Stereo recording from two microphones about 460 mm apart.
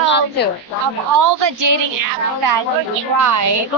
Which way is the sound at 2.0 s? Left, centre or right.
Right.